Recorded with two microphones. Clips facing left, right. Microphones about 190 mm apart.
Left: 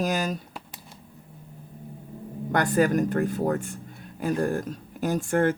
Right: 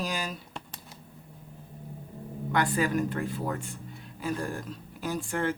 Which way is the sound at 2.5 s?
45° left (ahead or behind).